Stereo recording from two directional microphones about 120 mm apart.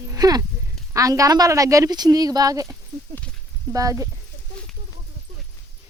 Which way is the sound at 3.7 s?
25° right (ahead or behind).